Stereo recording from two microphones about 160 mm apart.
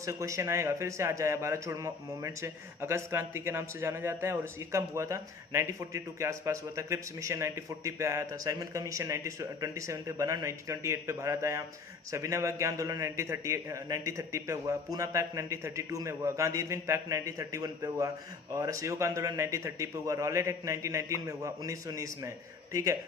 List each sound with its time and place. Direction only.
0.0 s speech: 20° right (ahead or behind)